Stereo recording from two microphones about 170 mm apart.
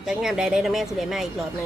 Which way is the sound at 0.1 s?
5° right (ahead or behind).